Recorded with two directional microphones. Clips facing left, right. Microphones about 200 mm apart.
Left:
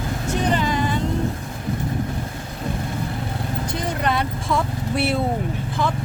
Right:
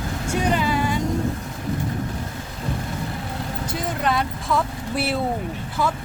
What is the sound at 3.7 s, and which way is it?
Vehicle, centre (ahead or behind).